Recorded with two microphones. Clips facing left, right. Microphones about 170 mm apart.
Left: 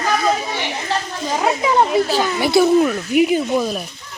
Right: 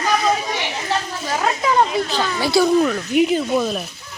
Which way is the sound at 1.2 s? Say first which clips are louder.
Left 3 dB; 10° left (ahead or behind).